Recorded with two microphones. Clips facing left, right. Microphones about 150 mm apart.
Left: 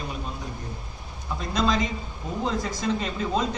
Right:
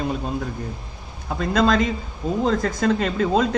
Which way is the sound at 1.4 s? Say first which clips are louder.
Right 6 dB; 55° right (ahead or behind).